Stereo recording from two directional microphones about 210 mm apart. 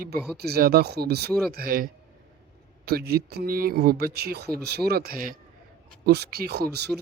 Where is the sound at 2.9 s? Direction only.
50° right (ahead or behind).